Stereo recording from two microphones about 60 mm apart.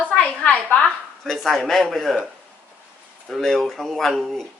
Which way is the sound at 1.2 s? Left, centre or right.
Centre.